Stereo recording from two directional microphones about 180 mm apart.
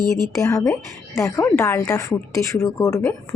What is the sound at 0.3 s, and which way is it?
A woman's voice, 15° left (ahead or behind).